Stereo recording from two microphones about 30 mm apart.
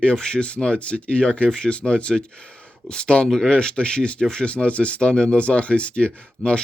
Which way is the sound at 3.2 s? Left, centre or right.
Left.